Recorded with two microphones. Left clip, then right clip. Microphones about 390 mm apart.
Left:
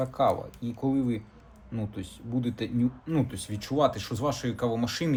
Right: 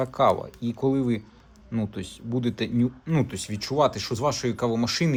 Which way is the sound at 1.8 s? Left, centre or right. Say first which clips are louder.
Right 5 dB; right.